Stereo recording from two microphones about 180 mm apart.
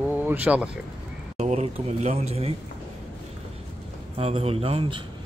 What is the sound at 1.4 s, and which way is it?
Speech, 40° right (ahead or behind).